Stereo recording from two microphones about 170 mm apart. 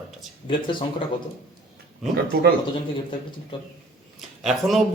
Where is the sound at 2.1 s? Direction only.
70° right (ahead or behind).